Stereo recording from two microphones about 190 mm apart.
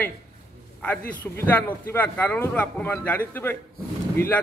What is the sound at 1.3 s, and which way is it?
Speech, 10° left (ahead or behind).